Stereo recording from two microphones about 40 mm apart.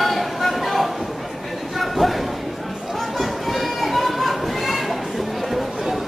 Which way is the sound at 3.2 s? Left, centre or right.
Centre.